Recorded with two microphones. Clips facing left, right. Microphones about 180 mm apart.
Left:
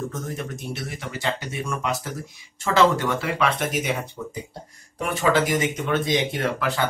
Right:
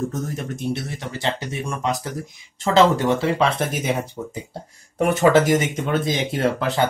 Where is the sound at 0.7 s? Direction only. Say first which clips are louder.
Right 5 dB; 25° right (ahead or behind).